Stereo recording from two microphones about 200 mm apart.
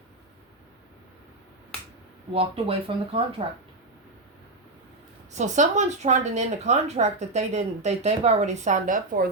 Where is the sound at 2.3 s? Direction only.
30° right (ahead or behind).